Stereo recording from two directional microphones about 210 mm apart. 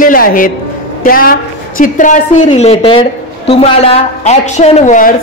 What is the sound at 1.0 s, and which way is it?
A woman's voice, 45° left (ahead or behind).